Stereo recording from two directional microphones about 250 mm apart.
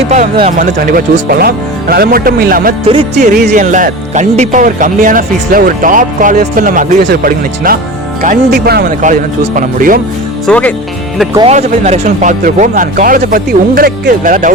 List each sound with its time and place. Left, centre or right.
0.1 s music: right
0.9 s speech: right
2.8 s music: right
3.4 s speech: right
10.4 s speech: centre
11.3 s speech: right